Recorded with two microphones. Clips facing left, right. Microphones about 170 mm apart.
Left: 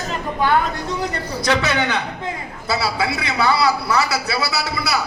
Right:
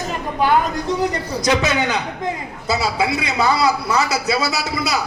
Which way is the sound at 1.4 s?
15° right (ahead or behind).